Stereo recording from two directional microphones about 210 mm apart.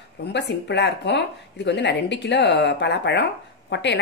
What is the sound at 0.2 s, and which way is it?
A woman's voice, 55° left (ahead or behind).